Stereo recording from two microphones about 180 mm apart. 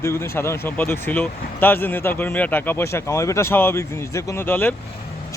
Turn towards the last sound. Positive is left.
turn(degrees=10)  # may be behind; listen again after turning